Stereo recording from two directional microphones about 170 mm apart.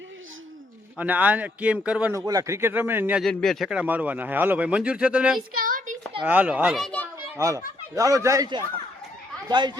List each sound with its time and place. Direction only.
0.9 s speech: 10° right (ahead or behind)
2.1 s speech: 20° right (ahead or behind)
3.2 s speech: centre (ahead or behind)
5.5 s a sound: 55° right (ahead or behind)
6.2 s a child's voice: 10° right (ahead or behind)
7.3 s a man's voice: 20° right (ahead or behind)